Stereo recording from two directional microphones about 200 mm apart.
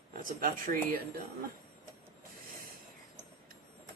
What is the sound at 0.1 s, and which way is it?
Speech, 45° right (ahead or behind).